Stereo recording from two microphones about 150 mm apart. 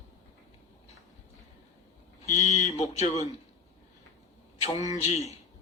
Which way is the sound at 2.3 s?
50° left (ahead or behind).